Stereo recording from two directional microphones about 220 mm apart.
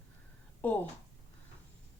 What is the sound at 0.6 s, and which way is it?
Speech, 10° left (ahead or behind).